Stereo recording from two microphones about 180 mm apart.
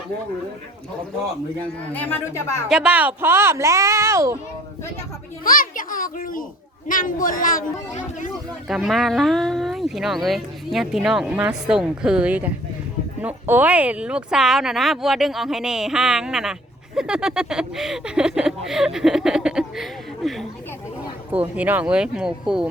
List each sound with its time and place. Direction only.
1.9 s speech: 10° left (ahead or behind)
2.6 s speech: 5° right (ahead or behind)
5.4 s speech: 50° left (ahead or behind)
8.6 s speech: centre (ahead or behind)